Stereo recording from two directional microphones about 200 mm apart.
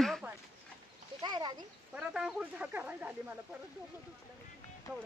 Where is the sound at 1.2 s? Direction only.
20° right (ahead or behind).